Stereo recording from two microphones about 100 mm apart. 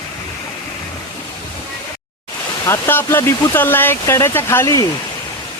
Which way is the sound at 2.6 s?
25° left (ahead or behind).